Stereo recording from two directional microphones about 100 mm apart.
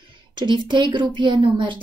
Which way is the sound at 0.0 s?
55° right (ahead or behind).